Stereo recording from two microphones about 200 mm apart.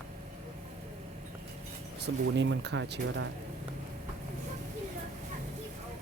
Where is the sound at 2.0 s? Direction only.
60° right (ahead or behind).